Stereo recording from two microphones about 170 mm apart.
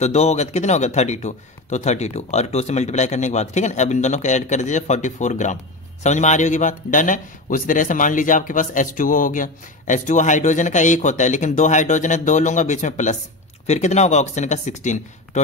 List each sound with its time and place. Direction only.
0.0 s a man's voice: 40° left (ahead or behind)